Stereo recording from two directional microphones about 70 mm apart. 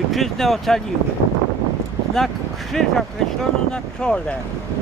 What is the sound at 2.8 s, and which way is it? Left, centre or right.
Speech, centre.